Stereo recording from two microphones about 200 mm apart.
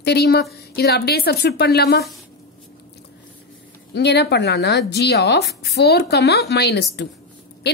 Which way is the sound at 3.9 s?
55° left (ahead or behind).